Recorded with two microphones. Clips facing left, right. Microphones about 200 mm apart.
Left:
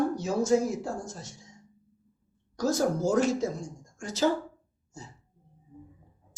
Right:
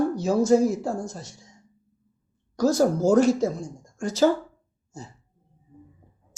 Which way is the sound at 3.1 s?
35° right (ahead or behind).